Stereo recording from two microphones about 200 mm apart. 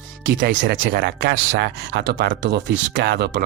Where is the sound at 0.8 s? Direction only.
60° right (ahead or behind).